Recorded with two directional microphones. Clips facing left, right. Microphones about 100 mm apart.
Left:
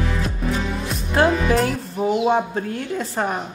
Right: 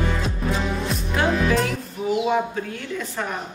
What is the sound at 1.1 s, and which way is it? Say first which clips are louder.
Speech: left 3 dB; 40° left (ahead or behind).